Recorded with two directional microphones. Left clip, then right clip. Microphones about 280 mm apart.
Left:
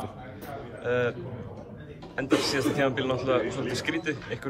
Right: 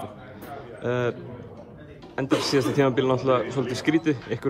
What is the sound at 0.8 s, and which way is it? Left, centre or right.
Speech, centre.